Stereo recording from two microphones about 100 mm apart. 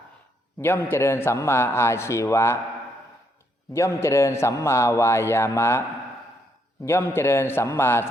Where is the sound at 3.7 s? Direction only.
30° left (ahead or behind).